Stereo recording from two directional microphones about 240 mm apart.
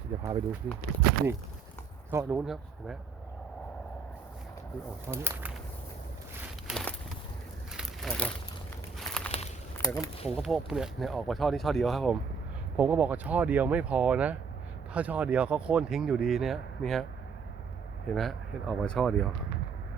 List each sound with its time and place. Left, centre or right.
0.2 s speech: centre
2.0 s speech: centre
5.0 s speech: centre
6.7 s walk: centre
7.7 s a sound: centre
9.7 s speech: centre
10.2 s speech: centre
18.1 s speech: centre